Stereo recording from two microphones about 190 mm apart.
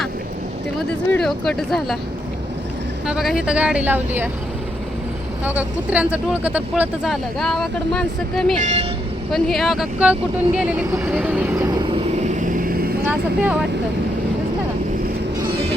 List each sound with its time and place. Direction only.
0.8 s speech: centre (ahead or behind)
3.1 s speech: 5° right (ahead or behind)
5.5 s speech: 10° right (ahead or behind)
8.5 s speech: 35° right (ahead or behind)
9.3 s speech: centre (ahead or behind); by 12.0 s 20° right (ahead or behind)
12.1 s vehicle: 40° right (ahead or behind)
13.1 s speech: 5° right (ahead or behind)